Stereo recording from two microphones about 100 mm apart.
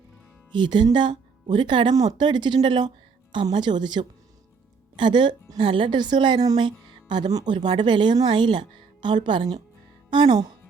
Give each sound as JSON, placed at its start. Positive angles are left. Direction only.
{"t": 0.5, "sound": "a woman's voice", "side_deg": -50}